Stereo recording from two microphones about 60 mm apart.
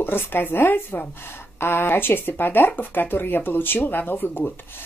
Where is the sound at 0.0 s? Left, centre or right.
Left.